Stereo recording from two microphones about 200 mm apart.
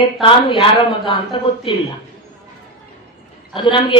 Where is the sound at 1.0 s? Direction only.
25° left (ahead or behind).